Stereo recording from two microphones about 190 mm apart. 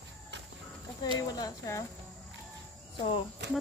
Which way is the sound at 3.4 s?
65° right (ahead or behind).